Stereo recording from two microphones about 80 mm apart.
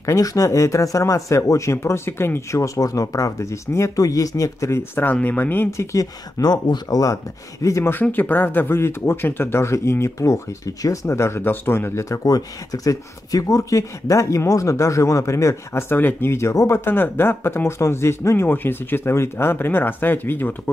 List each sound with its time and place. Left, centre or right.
0.0 s speech: left
5.1 s speech: centre
5.7 s speech: left
6.4 s speech: left
7.9 s speech: left